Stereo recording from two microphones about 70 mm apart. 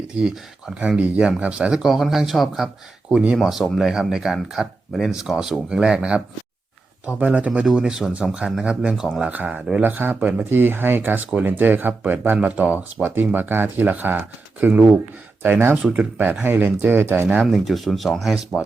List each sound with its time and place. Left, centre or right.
0.2 s speech: centre
3.1 s speech: centre
15.8 s speech: centre
16.4 s speech: right
17.4 s speech: centre